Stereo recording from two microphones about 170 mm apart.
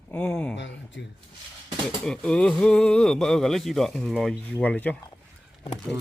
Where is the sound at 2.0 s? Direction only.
5° left (ahead or behind).